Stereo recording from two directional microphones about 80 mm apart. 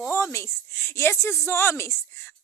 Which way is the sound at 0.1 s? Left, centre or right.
Left.